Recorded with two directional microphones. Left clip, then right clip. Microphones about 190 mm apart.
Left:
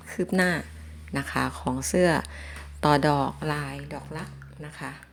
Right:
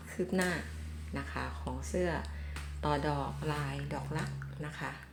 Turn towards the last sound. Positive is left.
turn(degrees=20)  # may be behind; listen again after turning